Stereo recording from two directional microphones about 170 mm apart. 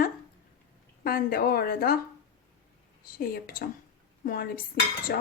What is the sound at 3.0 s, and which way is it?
Speech, 60° left (ahead or behind).